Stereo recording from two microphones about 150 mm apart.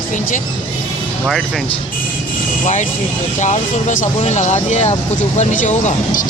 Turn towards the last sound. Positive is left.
turn(degrees=50)  # may be behind; listen again after turning